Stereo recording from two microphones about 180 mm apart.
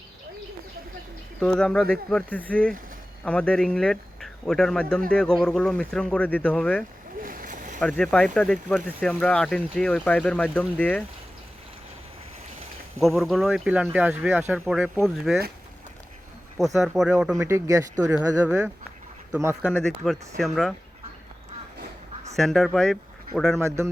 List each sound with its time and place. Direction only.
1.4 s speech: 5° left (ahead or behind)
7.2 s a sound: 50° right (ahead or behind)
7.8 s speech: 5° left (ahead or behind)
13.0 s speech: centre (ahead or behind)
16.7 s speech: centre (ahead or behind)
17.3 s speech: 15° right (ahead or behind)
19.4 s speech: 15° right (ahead or behind)
20.0 s speech: 5° right (ahead or behind)
22.4 s speech: centre (ahead or behind)
23.6 s speech: 15° right (ahead or behind)